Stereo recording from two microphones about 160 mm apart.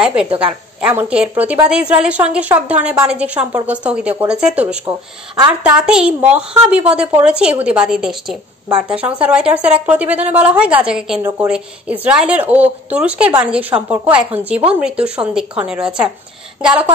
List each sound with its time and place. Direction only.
0.0 s a woman's voice: 5° right (ahead or behind)
0.3 s a woman's voice: 35° right (ahead or behind)
0.7 s a woman's voice: 10° right (ahead or behind)